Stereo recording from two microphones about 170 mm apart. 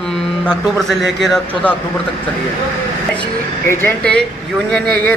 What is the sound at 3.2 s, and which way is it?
Speech, 15° left (ahead or behind).